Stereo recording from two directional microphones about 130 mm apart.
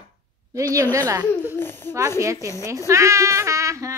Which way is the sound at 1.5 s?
15° left (ahead or behind).